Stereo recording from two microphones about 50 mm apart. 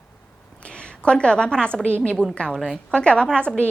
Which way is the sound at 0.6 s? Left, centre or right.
Left.